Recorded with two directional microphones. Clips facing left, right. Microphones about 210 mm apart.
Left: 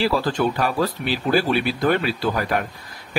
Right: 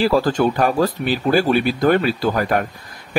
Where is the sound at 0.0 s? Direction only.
45° right (ahead or behind).